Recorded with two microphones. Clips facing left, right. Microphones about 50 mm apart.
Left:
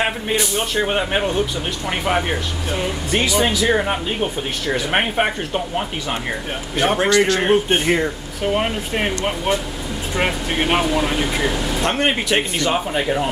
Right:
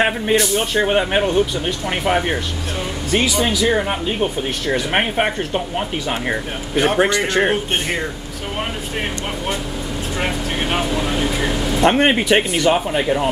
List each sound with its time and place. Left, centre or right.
0.0 s a man's voice: centre
10.1 s speech: left
11.8 s a man's voice: centre
12.5 s speech: centre